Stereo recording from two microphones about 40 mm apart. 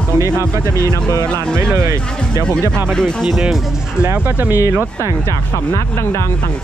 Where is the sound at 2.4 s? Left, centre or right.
Left.